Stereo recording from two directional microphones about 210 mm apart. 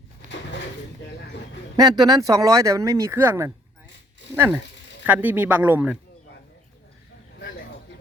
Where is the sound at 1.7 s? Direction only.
20° right (ahead or behind).